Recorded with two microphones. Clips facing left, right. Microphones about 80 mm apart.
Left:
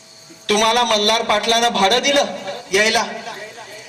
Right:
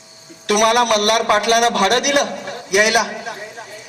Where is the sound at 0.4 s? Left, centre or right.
Centre.